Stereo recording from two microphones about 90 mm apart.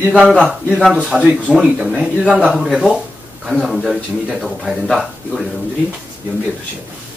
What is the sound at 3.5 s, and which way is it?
A man's voice, centre (ahead or behind).